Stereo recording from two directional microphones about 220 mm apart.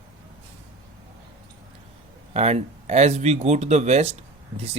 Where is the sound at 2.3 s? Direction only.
30° right (ahead or behind).